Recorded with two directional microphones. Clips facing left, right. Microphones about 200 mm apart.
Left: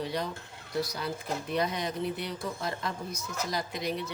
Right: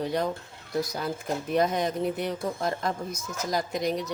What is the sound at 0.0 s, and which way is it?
Speech, 50° right (ahead or behind).